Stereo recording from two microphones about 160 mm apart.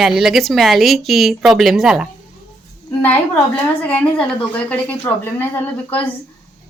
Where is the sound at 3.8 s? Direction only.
10° left (ahead or behind).